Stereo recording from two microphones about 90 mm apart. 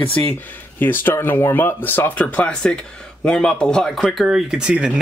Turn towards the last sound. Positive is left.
turn(degrees=-10)  # may be behind; listen again after turning